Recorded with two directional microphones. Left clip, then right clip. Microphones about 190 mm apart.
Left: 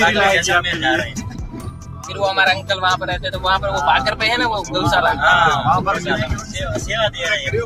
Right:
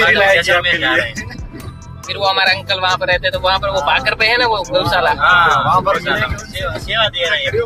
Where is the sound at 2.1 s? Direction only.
15° left (ahead or behind).